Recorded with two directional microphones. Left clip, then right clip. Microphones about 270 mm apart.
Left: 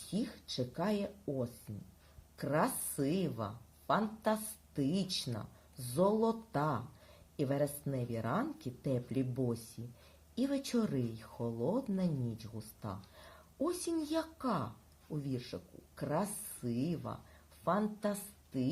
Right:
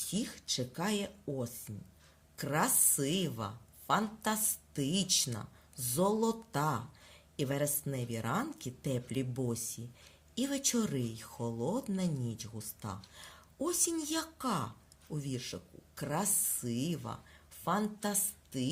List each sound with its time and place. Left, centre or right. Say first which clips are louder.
0.1 s speech: right 2 dB; right